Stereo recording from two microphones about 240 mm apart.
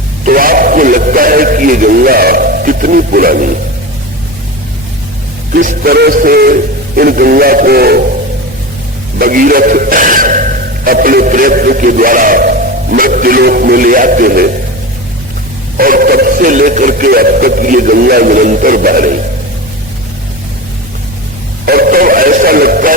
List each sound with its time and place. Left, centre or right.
0.3 s speech: right
5.5 s speech: right
9.1 s speech: right
15.8 s speech: right
21.7 s speech: right